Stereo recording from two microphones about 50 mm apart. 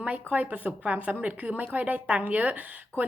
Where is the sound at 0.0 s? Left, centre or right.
Right.